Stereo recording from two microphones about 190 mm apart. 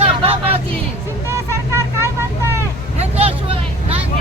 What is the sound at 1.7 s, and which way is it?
Vehicle, 15° right (ahead or behind).